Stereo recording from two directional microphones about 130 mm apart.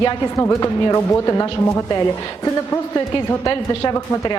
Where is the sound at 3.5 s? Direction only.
30° left (ahead or behind).